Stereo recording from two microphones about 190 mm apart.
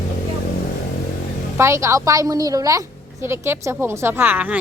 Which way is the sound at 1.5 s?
15° right (ahead or behind).